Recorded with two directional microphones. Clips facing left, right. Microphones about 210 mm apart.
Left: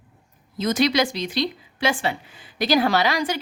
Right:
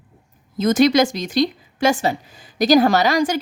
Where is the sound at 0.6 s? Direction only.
50° right (ahead or behind).